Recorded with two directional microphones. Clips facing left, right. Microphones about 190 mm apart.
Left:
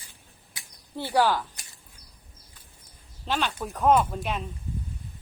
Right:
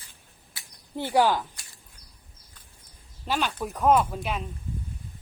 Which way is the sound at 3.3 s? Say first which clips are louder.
Right 1 dB; 10° right (ahead or behind).